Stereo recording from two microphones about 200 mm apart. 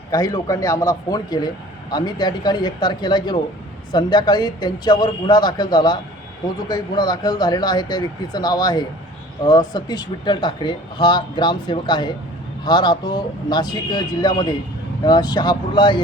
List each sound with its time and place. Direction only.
0.1 s a man's voice: 20° left (ahead or behind)